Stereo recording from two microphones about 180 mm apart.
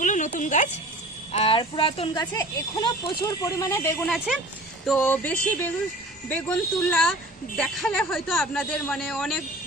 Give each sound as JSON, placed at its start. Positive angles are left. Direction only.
{"t": 0.0, "sound": "music", "side_deg": 45}
{"t": 0.3, "sound": "a woman's voice", "side_deg": 45}
{"t": 1.3, "sound": "a woman's voice", "side_deg": 30}